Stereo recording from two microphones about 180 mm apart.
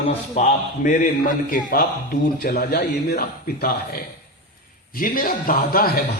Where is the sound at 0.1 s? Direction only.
35° left (ahead or behind).